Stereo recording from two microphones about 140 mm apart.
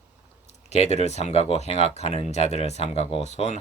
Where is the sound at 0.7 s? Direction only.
50° left (ahead or behind).